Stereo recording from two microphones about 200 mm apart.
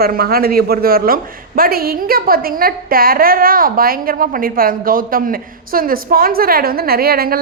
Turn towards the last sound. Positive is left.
turn(degrees=-50)  # may be behind; listen again after turning